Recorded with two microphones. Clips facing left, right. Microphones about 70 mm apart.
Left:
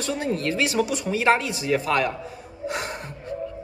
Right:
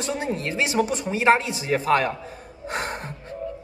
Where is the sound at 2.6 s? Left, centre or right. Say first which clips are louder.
Even; right.